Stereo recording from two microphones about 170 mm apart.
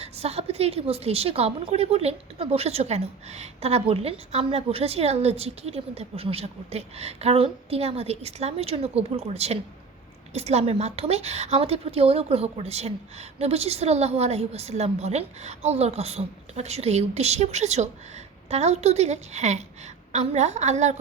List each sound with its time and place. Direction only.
0.0 s a woman's voice: 35° right (ahead or behind)